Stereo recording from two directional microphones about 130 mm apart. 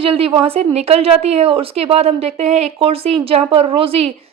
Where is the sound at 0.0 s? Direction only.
45° right (ahead or behind).